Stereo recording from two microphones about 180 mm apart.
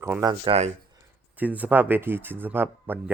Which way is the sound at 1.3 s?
10° right (ahead or behind).